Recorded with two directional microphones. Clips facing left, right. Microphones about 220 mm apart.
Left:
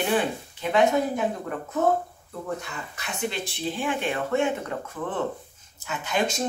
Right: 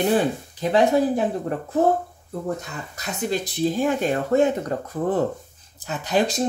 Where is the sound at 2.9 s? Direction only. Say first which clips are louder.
Right 5 dB; 40° right (ahead or behind).